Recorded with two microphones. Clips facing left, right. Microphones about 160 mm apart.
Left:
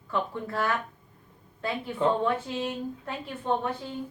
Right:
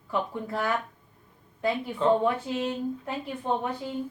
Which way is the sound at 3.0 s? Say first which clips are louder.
Right 1 dB; 15° right (ahead or behind).